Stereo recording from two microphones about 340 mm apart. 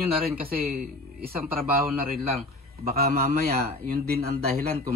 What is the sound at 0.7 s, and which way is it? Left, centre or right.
Speech, right.